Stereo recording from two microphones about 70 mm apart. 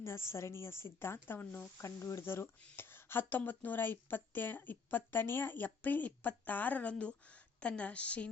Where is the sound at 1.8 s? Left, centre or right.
Left.